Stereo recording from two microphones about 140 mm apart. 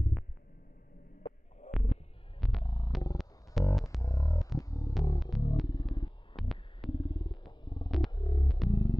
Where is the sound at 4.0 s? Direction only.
25° left (ahead or behind).